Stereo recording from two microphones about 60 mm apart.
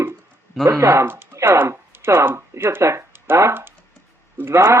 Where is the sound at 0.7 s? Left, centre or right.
Right.